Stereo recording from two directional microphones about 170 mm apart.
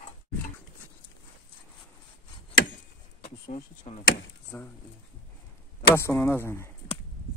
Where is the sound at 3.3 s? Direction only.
35° left (ahead or behind).